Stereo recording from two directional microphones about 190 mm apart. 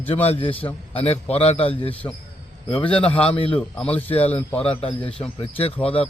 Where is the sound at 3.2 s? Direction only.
30° left (ahead or behind).